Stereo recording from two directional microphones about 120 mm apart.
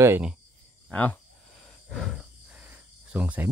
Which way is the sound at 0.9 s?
15° left (ahead or behind).